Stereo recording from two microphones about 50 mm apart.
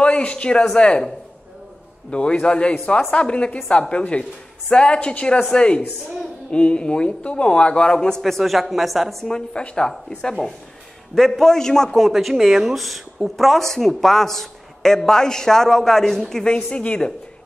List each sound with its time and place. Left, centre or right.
0.0 s a sound: left
0.7 s speech: left
8.2 s speech: centre
9.2 s a man's voice: centre
16.6 s speech: left